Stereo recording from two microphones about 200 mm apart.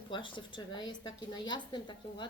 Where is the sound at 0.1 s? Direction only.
25° left (ahead or behind).